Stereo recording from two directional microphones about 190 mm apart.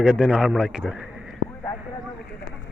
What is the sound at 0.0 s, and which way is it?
Speech, 5° right (ahead or behind).